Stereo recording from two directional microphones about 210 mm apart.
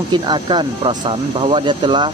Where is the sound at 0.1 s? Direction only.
20° right (ahead or behind).